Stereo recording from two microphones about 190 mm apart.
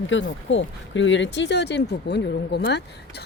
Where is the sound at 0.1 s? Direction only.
75° left (ahead or behind).